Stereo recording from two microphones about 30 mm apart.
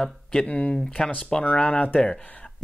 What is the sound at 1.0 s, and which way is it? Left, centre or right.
Speech, left.